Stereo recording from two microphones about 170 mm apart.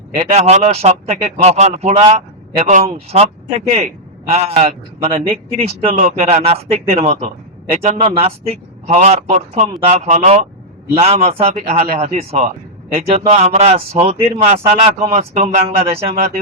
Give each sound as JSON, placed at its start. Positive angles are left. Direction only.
{"t": 0.2, "sound": "a man's voice", "side_deg": -40}
{"t": 16.1, "sound": "speech", "side_deg": -50}